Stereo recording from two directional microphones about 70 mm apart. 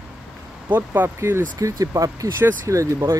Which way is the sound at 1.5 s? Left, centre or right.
Right.